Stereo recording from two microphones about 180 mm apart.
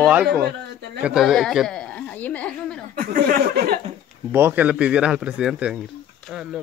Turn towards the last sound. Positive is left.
turn(degrees=0)  # may be behind; listen again after turning